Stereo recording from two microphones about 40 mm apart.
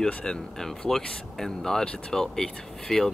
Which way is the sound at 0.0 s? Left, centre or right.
Centre.